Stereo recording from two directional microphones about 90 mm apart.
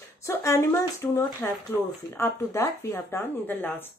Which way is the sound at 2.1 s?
30° left (ahead or behind).